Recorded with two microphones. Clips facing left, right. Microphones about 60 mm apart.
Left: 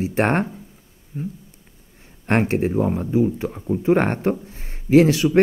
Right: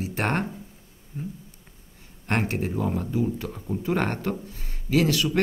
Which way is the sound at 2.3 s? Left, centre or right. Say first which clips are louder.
Left 7 dB; left.